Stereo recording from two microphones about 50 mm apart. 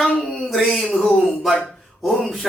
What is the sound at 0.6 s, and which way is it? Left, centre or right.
Speech, centre.